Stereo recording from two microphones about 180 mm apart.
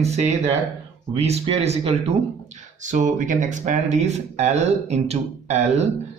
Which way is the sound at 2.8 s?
45° right (ahead or behind).